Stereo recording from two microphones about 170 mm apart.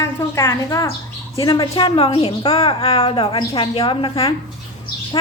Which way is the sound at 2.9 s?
35° left (ahead or behind).